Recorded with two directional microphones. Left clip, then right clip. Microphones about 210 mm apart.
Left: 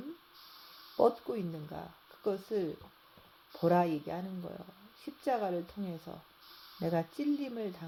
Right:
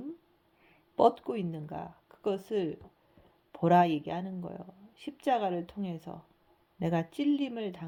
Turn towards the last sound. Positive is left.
turn(degrees=-35)  # may be behind; listen again after turning